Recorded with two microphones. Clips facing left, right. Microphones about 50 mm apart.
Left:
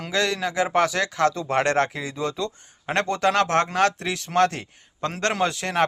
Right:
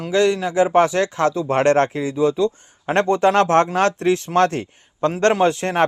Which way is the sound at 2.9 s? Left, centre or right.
Right.